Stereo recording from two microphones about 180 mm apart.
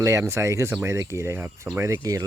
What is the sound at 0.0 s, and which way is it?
Speech, 15° right (ahead or behind).